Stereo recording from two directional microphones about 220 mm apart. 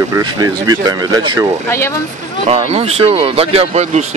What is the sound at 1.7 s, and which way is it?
Speech, 10° left (ahead or behind).